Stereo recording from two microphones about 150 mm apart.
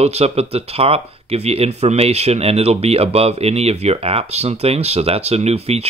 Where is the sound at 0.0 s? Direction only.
45° right (ahead or behind).